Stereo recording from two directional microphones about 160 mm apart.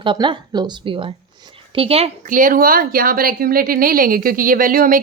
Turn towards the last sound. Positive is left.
turn(degrees=-60)  # may be behind; listen again after turning